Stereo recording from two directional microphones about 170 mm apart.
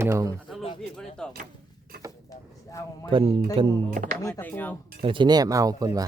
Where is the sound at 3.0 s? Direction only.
30° right (ahead or behind).